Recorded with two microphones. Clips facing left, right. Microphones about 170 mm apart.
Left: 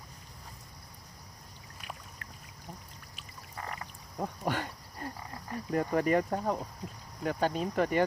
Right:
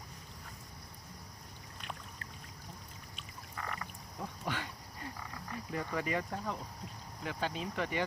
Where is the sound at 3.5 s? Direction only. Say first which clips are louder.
Left 1 dB; 35° left (ahead or behind).